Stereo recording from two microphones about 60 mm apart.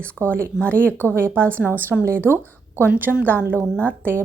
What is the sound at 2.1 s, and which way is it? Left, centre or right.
Speech, right.